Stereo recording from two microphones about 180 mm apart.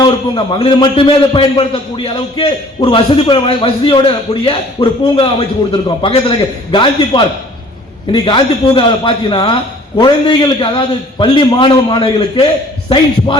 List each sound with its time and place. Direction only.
0.0 s a man's voice: 25° left (ahead or behind)